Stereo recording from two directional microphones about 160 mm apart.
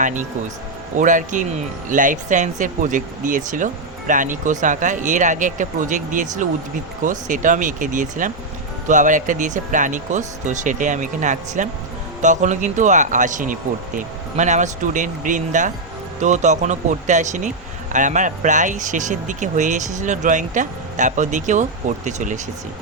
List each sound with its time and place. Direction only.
0.0 s speech: 50° right (ahead or behind)